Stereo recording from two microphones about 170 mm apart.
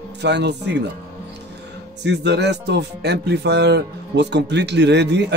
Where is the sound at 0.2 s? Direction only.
90° right.